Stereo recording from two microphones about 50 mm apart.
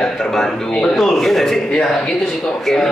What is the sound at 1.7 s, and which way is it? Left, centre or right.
Speech, centre.